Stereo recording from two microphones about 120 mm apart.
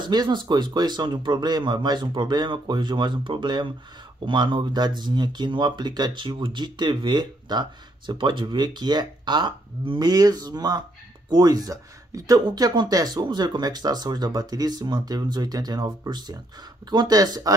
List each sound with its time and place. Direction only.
0.0 s speech: 40° right (ahead or behind)